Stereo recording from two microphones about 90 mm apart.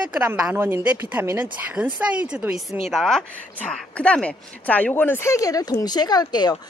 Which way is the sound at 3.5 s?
15° left (ahead or behind).